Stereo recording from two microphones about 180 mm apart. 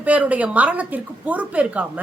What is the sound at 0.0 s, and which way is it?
A woman's voice, 10° right (ahead or behind).